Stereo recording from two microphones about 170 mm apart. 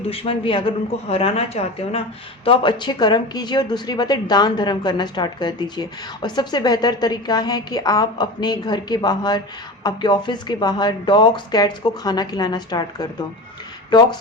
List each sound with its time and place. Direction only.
0.1 s a woman's voice: 35° left (ahead or behind)